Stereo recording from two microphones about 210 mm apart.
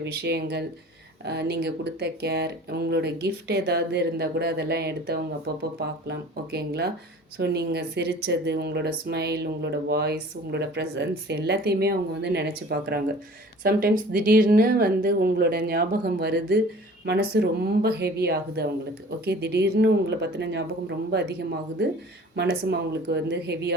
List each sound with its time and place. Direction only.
0.0 s speech: 55° right (ahead or behind)